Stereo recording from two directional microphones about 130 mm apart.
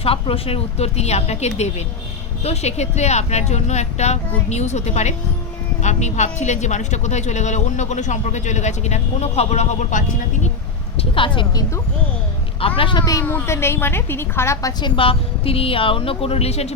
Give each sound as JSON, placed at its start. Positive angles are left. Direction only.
{"t": 0.0, "sound": "a woman's voice", "side_deg": 45}
{"t": 10.9, "sound": "a woman's voice", "side_deg": 40}
{"t": 13.2, "sound": "a woman's voice", "side_deg": 20}
{"t": 14.8, "sound": "a woman's voice", "side_deg": 40}